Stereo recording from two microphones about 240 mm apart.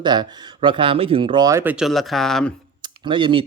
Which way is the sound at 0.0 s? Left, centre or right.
Centre.